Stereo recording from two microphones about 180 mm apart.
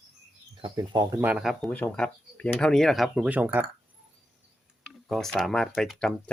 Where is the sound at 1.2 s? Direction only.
5° right (ahead or behind).